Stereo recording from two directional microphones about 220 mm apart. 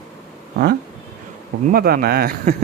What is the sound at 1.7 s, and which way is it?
Speech, 45° right (ahead or behind).